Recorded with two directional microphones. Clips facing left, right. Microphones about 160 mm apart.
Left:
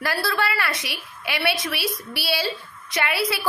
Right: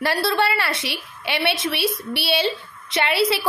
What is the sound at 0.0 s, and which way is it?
A woman's voice, 25° right (ahead or behind).